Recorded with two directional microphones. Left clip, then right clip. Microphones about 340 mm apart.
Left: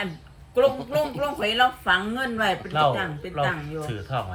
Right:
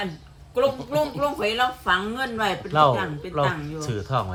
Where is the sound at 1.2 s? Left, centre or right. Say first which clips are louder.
Left 1 dB; right.